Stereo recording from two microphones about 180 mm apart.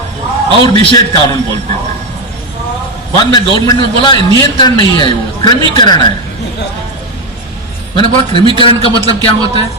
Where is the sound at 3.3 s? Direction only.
25° left (ahead or behind).